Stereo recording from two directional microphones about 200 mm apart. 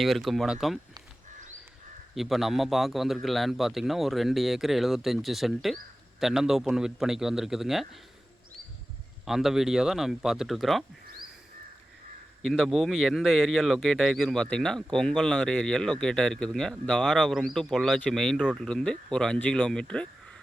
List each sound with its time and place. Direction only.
0.0 s speech: centre (ahead or behind)
2.1 s speech: centre (ahead or behind)
9.2 s speech: centre (ahead or behind)
12.4 s speech: centre (ahead or behind)